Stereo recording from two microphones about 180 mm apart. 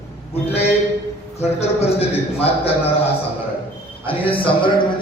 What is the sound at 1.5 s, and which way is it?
Speech, 35° left (ahead or behind).